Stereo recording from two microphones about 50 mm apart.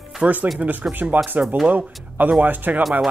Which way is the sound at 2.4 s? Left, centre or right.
Right.